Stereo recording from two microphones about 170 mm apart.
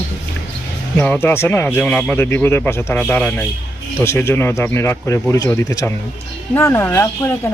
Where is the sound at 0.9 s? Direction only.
10° left (ahead or behind).